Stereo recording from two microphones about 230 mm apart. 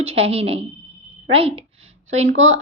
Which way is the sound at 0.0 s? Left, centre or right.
Right.